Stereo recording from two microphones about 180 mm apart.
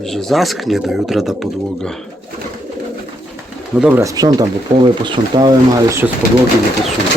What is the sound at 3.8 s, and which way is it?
Speech, 5° right (ahead or behind).